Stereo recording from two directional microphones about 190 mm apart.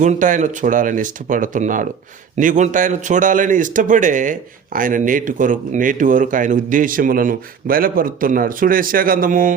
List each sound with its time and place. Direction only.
0.0 s a man's voice: 40° right (ahead or behind)